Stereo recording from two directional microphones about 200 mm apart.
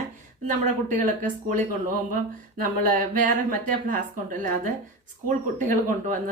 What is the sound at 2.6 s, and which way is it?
A woman's voice, 40° right (ahead or behind).